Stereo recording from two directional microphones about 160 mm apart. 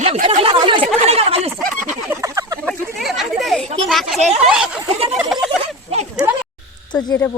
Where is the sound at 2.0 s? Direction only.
20° right (ahead or behind).